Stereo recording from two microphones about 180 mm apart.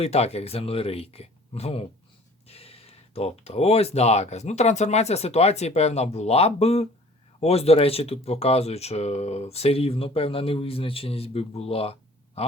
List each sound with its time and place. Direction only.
0.0 s speech: 35° left (ahead or behind)